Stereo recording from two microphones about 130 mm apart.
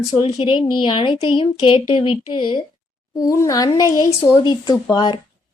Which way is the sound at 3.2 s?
25° left (ahead or behind).